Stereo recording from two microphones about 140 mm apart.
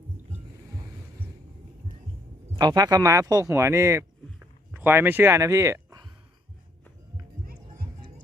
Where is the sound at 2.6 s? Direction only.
30° right (ahead or behind).